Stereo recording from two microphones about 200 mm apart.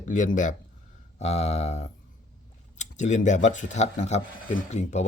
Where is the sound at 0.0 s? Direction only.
40° left (ahead or behind).